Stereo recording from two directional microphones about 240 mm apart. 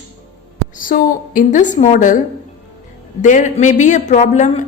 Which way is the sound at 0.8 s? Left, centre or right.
Left.